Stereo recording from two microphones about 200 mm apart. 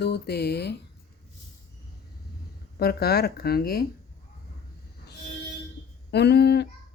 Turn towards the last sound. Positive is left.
turn(degrees=55)  # may be behind; listen again after turning